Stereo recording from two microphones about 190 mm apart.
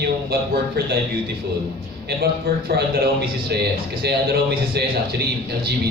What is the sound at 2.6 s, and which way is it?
A man's voice, 60° right (ahead or behind).